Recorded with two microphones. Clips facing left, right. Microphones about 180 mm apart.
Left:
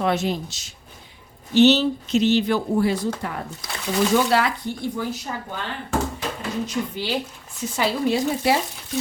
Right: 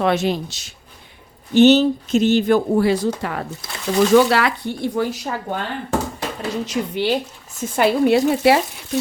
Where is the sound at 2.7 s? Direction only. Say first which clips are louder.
Right 4 dB; 85° right.